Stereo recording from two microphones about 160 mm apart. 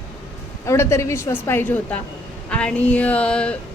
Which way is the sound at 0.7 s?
15° left (ahead or behind).